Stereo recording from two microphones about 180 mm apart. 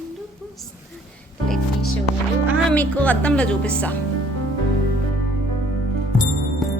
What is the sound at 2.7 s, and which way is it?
A woman's voice, 10° left (ahead or behind).